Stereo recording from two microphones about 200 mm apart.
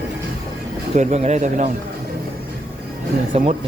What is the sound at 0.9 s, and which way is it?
Speech, 35° right (ahead or behind).